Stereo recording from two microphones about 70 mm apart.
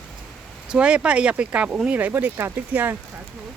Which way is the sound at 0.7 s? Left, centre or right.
Centre.